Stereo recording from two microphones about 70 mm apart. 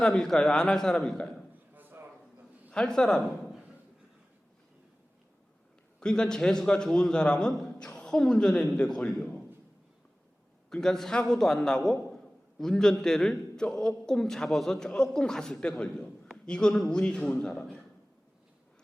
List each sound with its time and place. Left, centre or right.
0.0 s a man's voice: centre
1.7 s a sound: right
2.6 s a man's voice: centre
6.0 s a man's voice: centre
10.7 s a man's voice: centre